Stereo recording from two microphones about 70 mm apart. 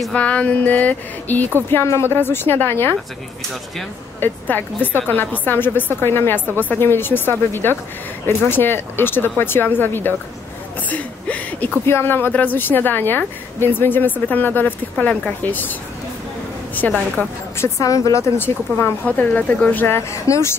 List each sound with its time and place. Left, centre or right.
0.1 s a woman's voice: centre
1.7 s speech: left
4.2 s a woman's voice: left
10.9 s speech: centre
11.8 s a woman's voice: left
17.6 s speech: left
19.0 s a woman's voice: left
20.2 s speech: left